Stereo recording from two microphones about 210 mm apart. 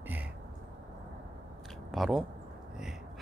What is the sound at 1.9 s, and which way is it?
Speech, centre (ahead or behind).